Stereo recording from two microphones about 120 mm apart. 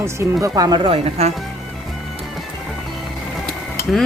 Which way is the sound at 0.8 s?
55° right (ahead or behind).